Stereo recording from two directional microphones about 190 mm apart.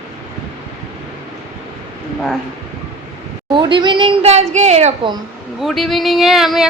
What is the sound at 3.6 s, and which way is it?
A woman's voice, 25° right (ahead or behind).